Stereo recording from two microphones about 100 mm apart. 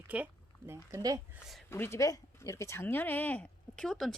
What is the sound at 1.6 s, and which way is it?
Speech, 25° left (ahead or behind).